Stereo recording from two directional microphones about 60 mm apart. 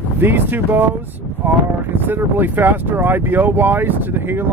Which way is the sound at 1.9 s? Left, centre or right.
Right.